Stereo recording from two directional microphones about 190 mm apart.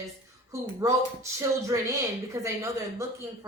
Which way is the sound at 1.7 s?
15° right (ahead or behind).